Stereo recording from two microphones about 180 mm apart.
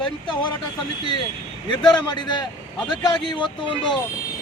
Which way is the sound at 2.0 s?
25° left (ahead or behind).